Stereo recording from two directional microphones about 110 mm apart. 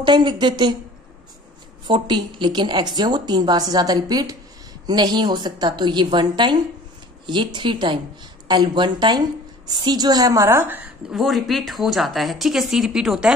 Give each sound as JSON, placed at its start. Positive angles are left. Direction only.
{"t": 0.0, "sound": "speech", "side_deg": -45}
{"t": 1.9, "sound": "a woman's voice", "side_deg": -45}
{"t": 11.1, "sound": "speech", "side_deg": 0}